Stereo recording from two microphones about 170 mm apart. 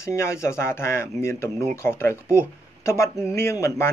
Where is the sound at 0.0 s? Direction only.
15° left (ahead or behind).